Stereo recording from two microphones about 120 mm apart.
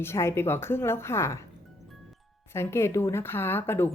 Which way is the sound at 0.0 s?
20° left (ahead or behind).